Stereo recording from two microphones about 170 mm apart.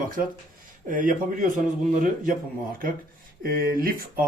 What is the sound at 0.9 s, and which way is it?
Speech, 50° right (ahead or behind).